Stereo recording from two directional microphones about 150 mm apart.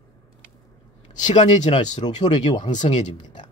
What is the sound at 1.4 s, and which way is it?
Speech, 50° left (ahead or behind).